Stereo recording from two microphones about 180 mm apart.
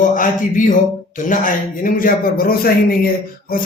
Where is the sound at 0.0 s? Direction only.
45° left (ahead or behind).